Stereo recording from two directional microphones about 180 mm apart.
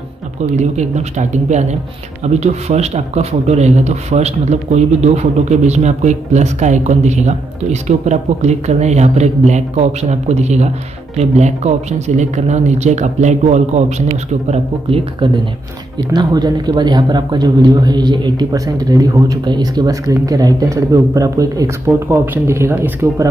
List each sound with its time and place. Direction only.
0.6 s speech: 40° right (ahead or behind); by 23.3 s 15° right (ahead or behind)